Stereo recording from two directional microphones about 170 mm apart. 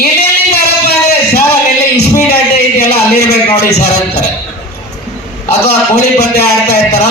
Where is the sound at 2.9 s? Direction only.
70° left (ahead or behind).